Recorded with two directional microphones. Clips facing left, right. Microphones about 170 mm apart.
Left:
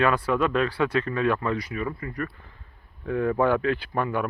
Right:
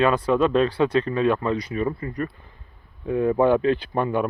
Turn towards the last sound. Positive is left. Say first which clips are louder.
# right 4 dB
turn(degrees=-25)  # may be behind; listen again after turning